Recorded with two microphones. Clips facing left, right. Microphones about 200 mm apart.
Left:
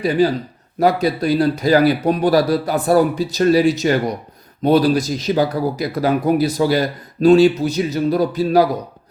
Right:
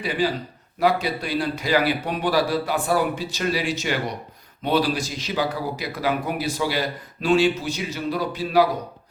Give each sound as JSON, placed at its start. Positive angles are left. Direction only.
{"t": 0.0, "sound": "speech", "side_deg": 40}